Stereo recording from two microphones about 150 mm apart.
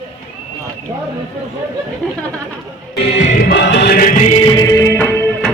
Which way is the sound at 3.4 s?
90° left.